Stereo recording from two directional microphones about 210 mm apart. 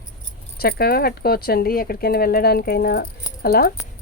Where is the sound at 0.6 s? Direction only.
45° left (ahead or behind).